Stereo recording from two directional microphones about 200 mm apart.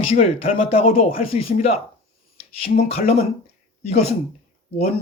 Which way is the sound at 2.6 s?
30° left (ahead or behind).